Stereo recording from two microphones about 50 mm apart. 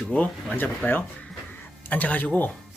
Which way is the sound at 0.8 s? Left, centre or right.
Left.